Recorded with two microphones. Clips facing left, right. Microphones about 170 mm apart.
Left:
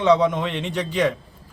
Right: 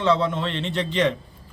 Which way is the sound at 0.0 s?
15° left (ahead or behind).